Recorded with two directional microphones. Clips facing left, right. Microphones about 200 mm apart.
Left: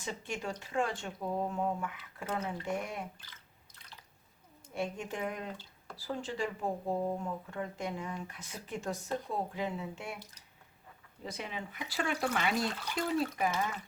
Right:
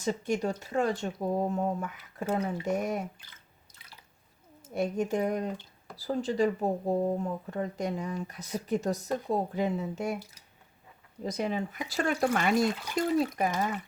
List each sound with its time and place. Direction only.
0.0 s speech: 40° right (ahead or behind)
4.7 s speech: 40° right (ahead or behind)
11.2 s speech: 40° right (ahead or behind)